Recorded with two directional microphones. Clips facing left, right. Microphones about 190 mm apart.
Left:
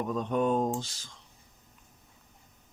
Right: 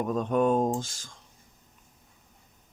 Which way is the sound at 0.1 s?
50° right (ahead or behind).